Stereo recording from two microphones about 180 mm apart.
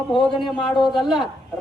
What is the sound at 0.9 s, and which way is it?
Speech, centre (ahead or behind).